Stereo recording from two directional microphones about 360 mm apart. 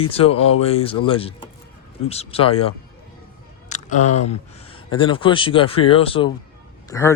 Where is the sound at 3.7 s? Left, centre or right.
Centre.